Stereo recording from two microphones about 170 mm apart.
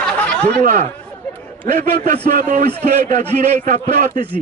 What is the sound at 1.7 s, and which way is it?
A man's voice, 50° right (ahead or behind).